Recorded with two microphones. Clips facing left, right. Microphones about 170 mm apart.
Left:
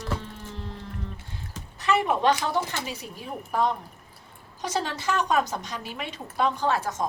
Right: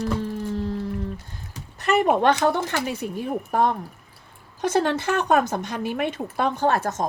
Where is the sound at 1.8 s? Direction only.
50° right (ahead or behind).